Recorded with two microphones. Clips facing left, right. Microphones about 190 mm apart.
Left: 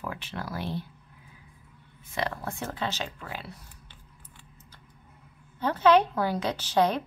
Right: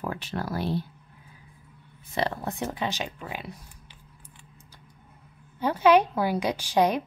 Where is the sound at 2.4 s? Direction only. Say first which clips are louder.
Right 3 dB; 15° right (ahead or behind).